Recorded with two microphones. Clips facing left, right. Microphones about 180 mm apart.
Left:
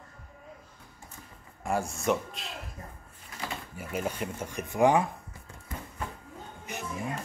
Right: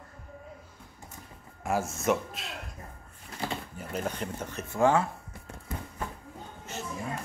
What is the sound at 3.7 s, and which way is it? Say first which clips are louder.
Speech: left 1 dB; 10° left (ahead or behind).